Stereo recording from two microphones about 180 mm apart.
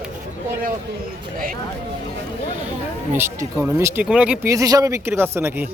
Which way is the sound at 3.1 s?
15° right (ahead or behind).